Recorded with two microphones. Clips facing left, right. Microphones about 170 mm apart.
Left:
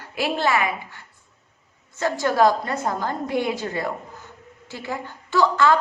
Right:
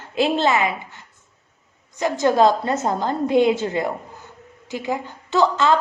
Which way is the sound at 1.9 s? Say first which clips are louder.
Right 3 dB; 20° right (ahead or behind).